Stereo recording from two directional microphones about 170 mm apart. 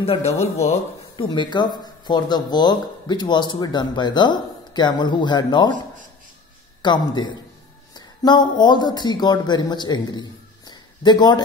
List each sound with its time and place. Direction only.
0.0 s speech: 35° left (ahead or behind)
6.8 s speech: 25° left (ahead or behind)
10.7 s a sound: 25° left (ahead or behind)